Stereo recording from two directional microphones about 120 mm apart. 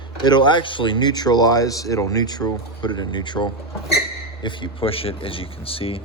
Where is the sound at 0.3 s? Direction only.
40° left (ahead or behind).